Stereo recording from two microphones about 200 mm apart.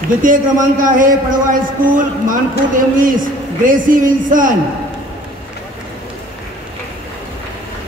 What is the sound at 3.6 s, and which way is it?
Speech, 40° right (ahead or behind).